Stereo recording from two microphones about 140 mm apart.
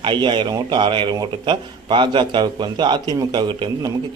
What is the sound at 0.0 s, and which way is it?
Speech, 35° right (ahead or behind).